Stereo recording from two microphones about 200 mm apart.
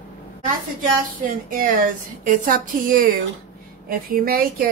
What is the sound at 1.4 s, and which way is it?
A woman's voice, 40° right (ahead or behind).